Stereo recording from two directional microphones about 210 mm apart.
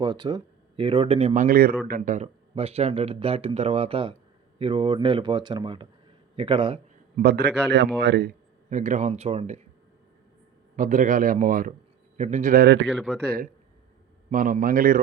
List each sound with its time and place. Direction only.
0.0 s speech: 20° right (ahead or behind); by 1.7 s 45° right (ahead or behind)
2.0 s speech: 35° right (ahead or behind)
7.2 s a man's voice: 50° right (ahead or behind)
8.7 s a man's voice: 35° right (ahead or behind)
10.8 s a man's voice: 40° right (ahead or behind); by 12.9 s 55° right (ahead or behind)
12.9 s speech: centre (ahead or behind)
13.2 s a man's voice: 45° right (ahead or behind)